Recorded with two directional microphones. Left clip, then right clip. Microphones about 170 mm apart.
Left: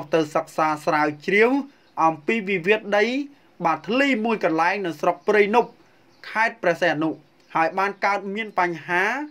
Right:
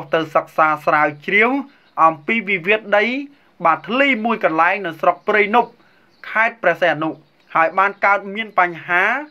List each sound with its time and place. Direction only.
0.3 s speech: 40° left (ahead or behind)
2.0 s speech: 30° left (ahead or behind)
3.7 s speech: 45° left (ahead or behind)